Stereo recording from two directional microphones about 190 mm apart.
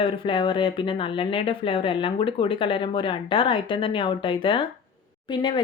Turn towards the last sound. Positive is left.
turn(degrees=25)  # may be behind; listen again after turning